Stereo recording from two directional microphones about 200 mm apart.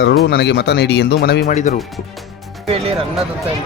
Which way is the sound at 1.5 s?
40° left (ahead or behind).